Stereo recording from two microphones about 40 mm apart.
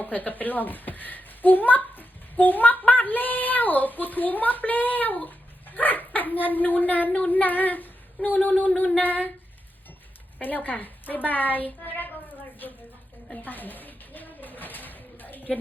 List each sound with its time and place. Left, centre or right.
0.0 s a child's voice: left
10.4 s a child's voice: left
13.4 s a sound: left